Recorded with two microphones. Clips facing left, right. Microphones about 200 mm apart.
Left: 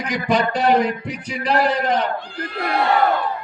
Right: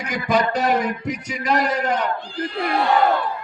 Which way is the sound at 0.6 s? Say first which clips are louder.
Left 3 dB; 30° left (ahead or behind).